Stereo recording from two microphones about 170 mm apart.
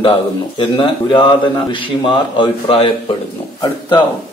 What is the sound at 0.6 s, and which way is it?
A man's voice, 30° left (ahead or behind).